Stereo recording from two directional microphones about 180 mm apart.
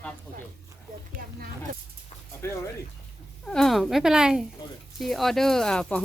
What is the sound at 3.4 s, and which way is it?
Speech, 5° left (ahead or behind).